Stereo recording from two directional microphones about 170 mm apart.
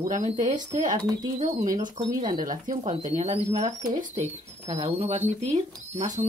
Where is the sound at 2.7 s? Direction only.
40° right (ahead or behind).